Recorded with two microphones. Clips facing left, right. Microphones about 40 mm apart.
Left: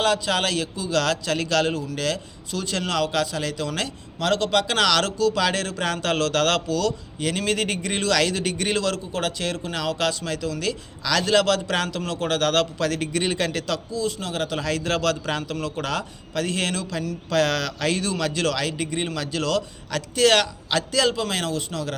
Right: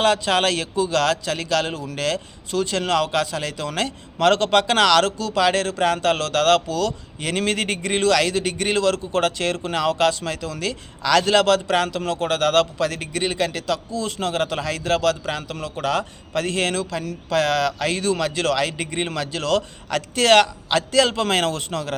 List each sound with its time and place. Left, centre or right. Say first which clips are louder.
0.0 s a man's voice: right 3 dB; right; by 1.8 s centre
2.6 s a man's voice: right 4 dB; right
3.8 s speech: right 9 dB; right
4.9 s a man's voice: right 2 dB; right
9.1 s a man's voice: right 5 dB; right; by 13.7 s centre
13.9 s speech: right 3 dB; right
14.6 s a man's voice: right 2 dB; centre
16.0 s a man's voice: right 3 dB; right
17.2 s a man's voice: right 3 dB; centre; by 21.9 s right